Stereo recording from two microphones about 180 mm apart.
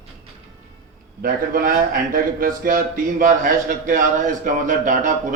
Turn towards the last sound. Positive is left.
turn(degrees=-45)  # may be behind; listen again after turning